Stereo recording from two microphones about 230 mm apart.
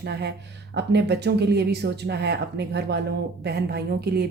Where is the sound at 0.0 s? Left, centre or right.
Right.